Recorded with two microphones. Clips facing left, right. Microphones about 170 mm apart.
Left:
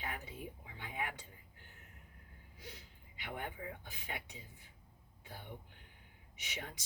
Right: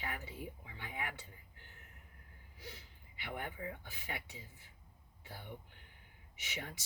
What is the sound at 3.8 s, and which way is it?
Speech, 20° left (ahead or behind).